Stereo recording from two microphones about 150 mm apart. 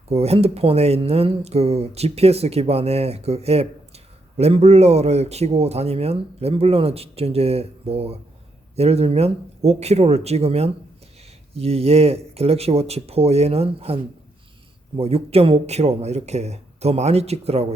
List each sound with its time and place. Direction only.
0.1 s speech: 45° right (ahead or behind)